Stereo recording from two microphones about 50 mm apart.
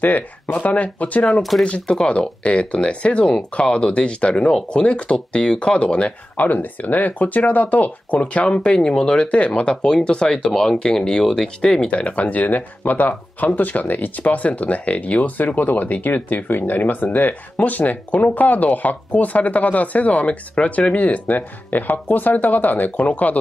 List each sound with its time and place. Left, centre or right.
0.0 s speech: left
8.5 s speech: centre
11.9 s speech: left